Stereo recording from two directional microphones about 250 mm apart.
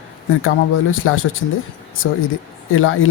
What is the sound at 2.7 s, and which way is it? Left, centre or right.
Speech, left.